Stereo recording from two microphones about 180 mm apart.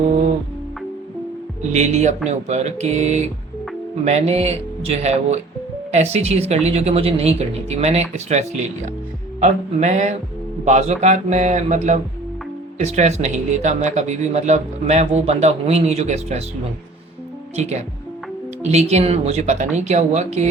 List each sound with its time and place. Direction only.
1.7 s speech: 40° right (ahead or behind)
17.6 s speech: 40° right (ahead or behind)